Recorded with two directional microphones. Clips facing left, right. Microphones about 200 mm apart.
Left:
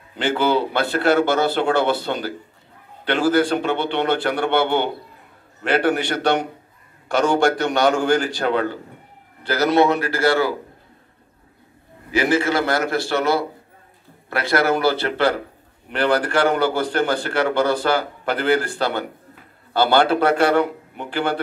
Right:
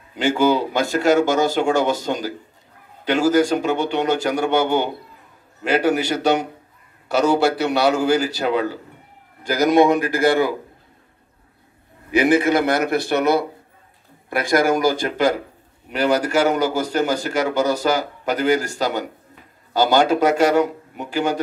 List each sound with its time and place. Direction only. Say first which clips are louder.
0.1 s a man's voice: right 2 dB; 10° right (ahead or behind)
12.1 s a man's voice: right 3 dB; 20° right (ahead or behind)